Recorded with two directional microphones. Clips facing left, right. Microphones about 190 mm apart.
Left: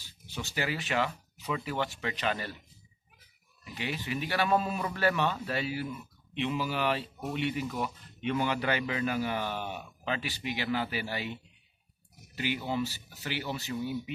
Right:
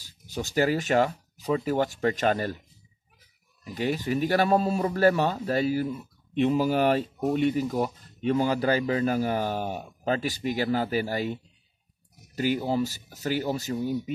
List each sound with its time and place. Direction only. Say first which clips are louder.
0.0 s speech: right 7 dB; 40° right (ahead or behind)
3.6 s speech: right 9 dB; 45° right (ahead or behind)
12.4 s speech: right 6 dB; 40° right (ahead or behind)